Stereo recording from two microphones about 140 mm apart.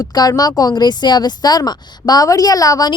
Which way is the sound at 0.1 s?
25° left (ahead or behind).